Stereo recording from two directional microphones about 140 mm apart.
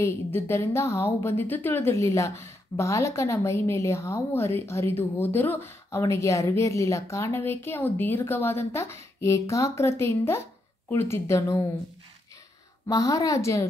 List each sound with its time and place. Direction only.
0.0 s a woman's voice: 20° left (ahead or behind)
12.8 s a woman's voice: 25° left (ahead or behind)